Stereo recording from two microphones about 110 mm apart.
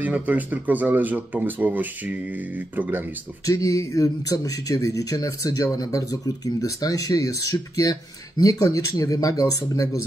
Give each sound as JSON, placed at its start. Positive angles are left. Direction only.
{"t": 0.0, "sound": "speech", "side_deg": -15}
{"t": 3.4, "sound": "speech", "side_deg": 30}